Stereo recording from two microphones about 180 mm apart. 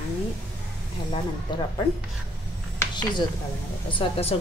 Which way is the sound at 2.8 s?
25° left (ahead or behind).